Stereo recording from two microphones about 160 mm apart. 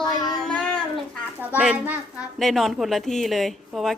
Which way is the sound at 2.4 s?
Centre (ahead or behind).